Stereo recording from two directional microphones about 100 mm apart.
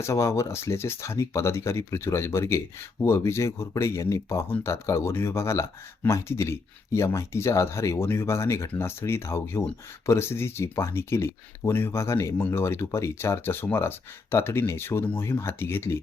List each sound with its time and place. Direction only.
0.0 s speech: 30° left (ahead or behind)